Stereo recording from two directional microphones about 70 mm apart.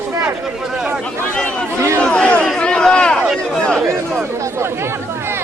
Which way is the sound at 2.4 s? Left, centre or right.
Centre.